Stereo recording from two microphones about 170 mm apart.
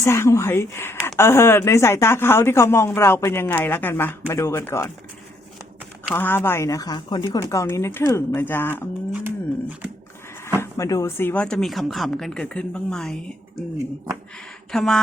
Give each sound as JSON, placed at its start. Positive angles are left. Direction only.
{"t": 0.0, "sound": "speech", "side_deg": 15}
{"t": 6.1, "sound": "speech", "side_deg": 10}
{"t": 9.1, "sound": "speech", "side_deg": -10}
{"t": 10.6, "sound": "speech", "side_deg": 20}
{"t": 14.7, "sound": "speech", "side_deg": 0}